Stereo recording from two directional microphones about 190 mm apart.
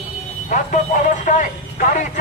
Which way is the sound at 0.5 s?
45° left (ahead or behind).